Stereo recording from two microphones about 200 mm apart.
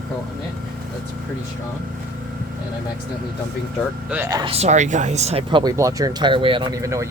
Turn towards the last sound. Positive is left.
turn(degrees=-15)  # may be behind; listen again after turning